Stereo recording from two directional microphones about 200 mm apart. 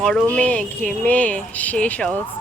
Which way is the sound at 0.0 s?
Centre (ahead or behind).